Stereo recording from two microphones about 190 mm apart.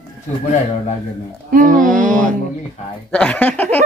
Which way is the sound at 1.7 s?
5° left (ahead or behind).